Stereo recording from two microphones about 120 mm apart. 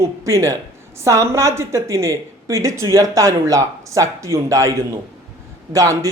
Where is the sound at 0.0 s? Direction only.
25° right (ahead or behind).